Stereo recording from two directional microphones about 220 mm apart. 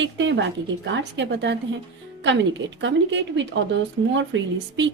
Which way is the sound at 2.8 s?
55° right (ahead or behind).